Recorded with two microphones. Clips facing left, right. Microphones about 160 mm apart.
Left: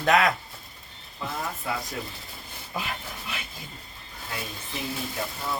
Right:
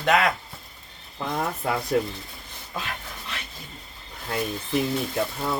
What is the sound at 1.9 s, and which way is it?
Speech, 60° right (ahead or behind).